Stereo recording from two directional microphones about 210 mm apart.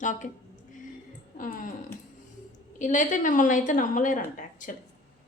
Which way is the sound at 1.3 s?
40° left (ahead or behind).